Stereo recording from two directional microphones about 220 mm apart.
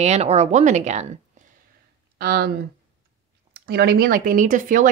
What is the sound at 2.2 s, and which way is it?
Speech, 45° right (ahead or behind).